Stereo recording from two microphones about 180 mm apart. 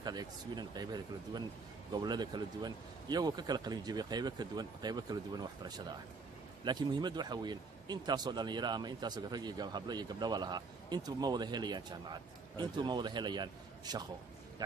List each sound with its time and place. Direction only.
0.0 s speech: 20° right (ahead or behind)